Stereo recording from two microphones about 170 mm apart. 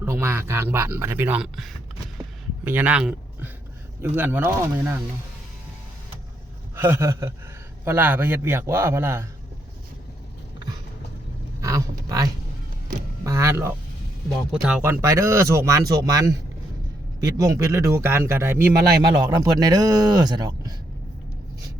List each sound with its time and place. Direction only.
0.0 s speech: 15° right (ahead or behind)
6.7 s speech: 15° right (ahead or behind)
11.6 s speech: 20° right (ahead or behind)
14.5 s speech: 5° right (ahead or behind)
18.8 s a man's voice: 65° right (ahead or behind)
19.2 s speech: 20° right (ahead or behind)